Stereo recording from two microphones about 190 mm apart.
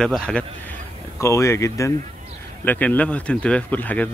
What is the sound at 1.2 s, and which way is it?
Speech, 15° left (ahead or behind).